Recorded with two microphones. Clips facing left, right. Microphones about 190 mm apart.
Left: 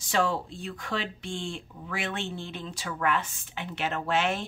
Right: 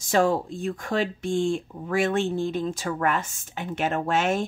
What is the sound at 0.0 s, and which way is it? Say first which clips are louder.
Speech: right 6 dB; 45° right (ahead or behind).